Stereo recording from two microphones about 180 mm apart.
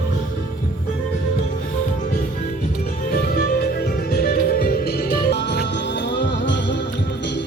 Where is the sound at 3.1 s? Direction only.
55° left (ahead or behind); by 7.4 s 75° left (ahead or behind).